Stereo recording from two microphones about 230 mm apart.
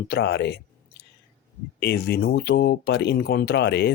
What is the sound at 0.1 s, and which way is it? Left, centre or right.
Speech, left.